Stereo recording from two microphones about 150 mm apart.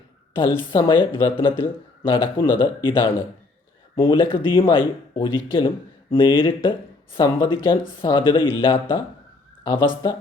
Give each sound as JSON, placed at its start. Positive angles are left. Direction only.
{"t": 0.7, "sound": "speech", "side_deg": 35}